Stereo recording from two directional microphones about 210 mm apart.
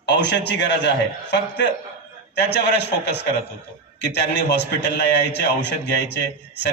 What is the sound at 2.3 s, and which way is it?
A man's voice, 55° left (ahead or behind).